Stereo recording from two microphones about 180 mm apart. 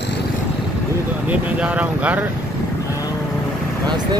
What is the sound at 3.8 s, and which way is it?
Speech, 25° right (ahead or behind).